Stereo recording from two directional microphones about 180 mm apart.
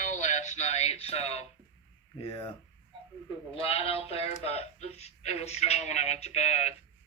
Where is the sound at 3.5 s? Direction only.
30° left (ahead or behind).